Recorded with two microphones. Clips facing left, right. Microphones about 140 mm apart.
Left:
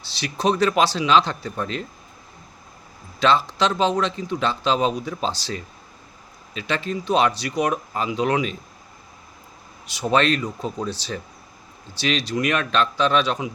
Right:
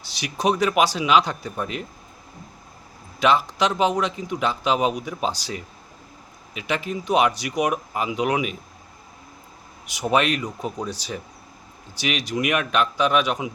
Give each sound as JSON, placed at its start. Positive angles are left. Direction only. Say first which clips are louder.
{"t": 0.1, "sound": "speech", "louder": "left 1 dB", "side_deg": -15}
{"t": 3.2, "sound": "speech", "louder": "even", "side_deg": -15}
{"t": 9.8, "sound": "speech", "louder": "left 1 dB", "side_deg": -15}